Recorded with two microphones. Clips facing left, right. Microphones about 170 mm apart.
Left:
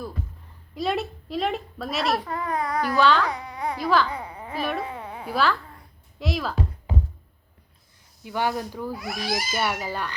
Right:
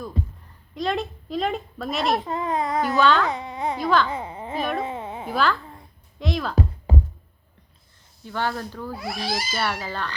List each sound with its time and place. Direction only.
0.2 s a sound: 30° right (ahead or behind)
0.7 s speech: 5° left (ahead or behind)
2.1 s a child's voice: 20° right (ahead or behind)
3.0 s speech: centre (ahead or behind)
3.2 s a sound: 25° right (ahead or behind)
3.8 s speech: centre (ahead or behind)
4.0 s a sound: 25° right (ahead or behind)
5.3 s speech: centre (ahead or behind)
8.2 s speech: 15° left (ahead or behind)
9.0 s a child's voice: 30° right (ahead or behind)
9.5 s speech: 10° left (ahead or behind)